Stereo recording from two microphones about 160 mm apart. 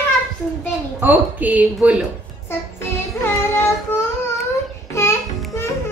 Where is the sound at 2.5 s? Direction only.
15° left (ahead or behind).